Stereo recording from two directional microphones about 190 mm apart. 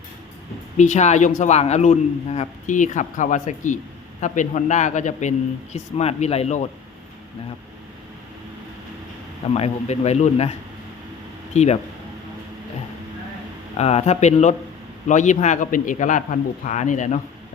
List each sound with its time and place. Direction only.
0.8 s a man's voice: 40° left (ahead or behind)
9.6 s a man's voice: 35° left (ahead or behind)
11.5 s a man's voice: 35° left (ahead or behind)
13.7 s a man's voice: 35° left (ahead or behind)